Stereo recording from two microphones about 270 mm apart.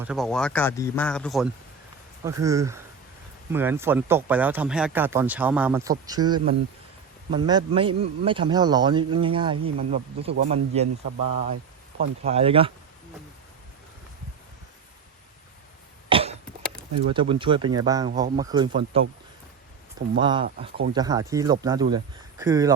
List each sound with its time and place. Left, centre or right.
0.0 s speech: centre
2.2 s a man's voice: centre
12.2 s a man's voice: right
16.0 s cough: right
16.9 s speech: right
17.2 s speech: centre
20.1 s a man's voice: centre